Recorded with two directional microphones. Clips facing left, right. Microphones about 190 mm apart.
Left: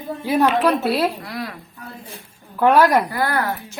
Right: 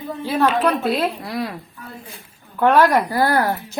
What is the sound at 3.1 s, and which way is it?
Speech, 35° right (ahead or behind).